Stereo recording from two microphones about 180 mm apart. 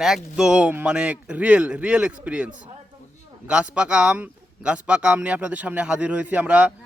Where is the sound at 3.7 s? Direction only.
5° right (ahead or behind).